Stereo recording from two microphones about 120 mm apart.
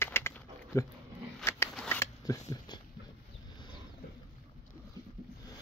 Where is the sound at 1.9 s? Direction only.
25° left (ahead or behind).